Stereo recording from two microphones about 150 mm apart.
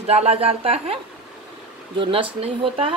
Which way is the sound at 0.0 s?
45° right (ahead or behind).